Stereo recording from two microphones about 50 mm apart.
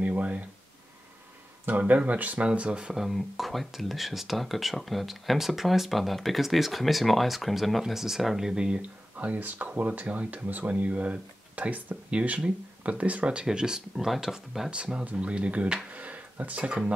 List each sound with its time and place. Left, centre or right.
0.0 s speech: right
1.7 s speech: right
2.9 s speech: centre
9.1 s speech: right
13.5 s speech: centre
14.7 s speech: right